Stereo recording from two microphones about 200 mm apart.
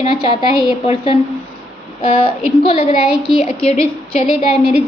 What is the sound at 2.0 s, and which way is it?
Child singing, 30° left (ahead or behind).